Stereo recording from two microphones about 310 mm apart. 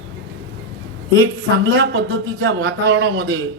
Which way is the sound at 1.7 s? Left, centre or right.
Right.